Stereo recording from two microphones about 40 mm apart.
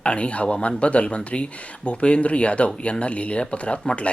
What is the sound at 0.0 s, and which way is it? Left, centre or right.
Speech, left.